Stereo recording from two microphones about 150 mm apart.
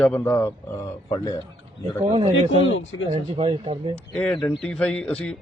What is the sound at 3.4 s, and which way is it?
Speech, 40° right (ahead or behind).